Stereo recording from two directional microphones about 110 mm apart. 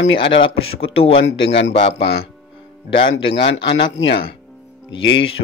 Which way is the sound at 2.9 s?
55° left (ahead or behind).